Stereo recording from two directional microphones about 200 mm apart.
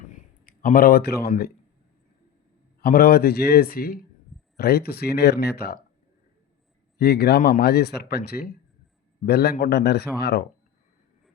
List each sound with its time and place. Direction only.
0.1 s a sound: 45° left (ahead or behind)
2.8 s speech: 50° left (ahead or behind)
7.0 s a man's voice: 55° left (ahead or behind)